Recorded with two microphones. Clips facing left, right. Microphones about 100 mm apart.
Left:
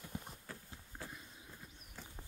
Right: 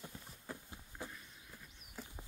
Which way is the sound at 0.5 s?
15° right (ahead or behind).